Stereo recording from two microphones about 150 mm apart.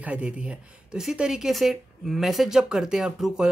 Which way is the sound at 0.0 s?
10° right (ahead or behind).